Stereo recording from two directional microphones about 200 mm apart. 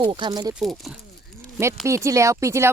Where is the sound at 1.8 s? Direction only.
15° right (ahead or behind).